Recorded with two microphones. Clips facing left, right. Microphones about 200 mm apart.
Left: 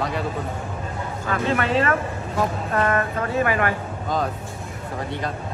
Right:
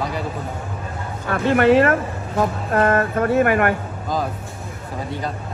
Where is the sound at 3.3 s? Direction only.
55° right (ahead or behind).